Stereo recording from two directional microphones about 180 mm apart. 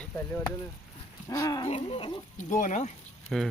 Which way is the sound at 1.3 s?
20° left (ahead or behind).